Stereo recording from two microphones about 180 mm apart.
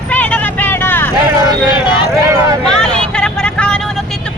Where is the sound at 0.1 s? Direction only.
10° left (ahead or behind).